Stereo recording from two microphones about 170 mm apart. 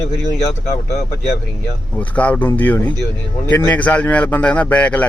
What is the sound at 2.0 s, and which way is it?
A man's voice, 10° left (ahead or behind).